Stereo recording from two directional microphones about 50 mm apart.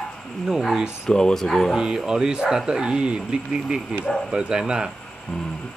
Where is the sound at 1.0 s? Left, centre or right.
Centre.